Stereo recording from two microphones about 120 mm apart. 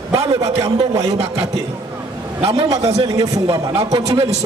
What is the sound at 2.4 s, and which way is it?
Music, 50° right (ahead or behind).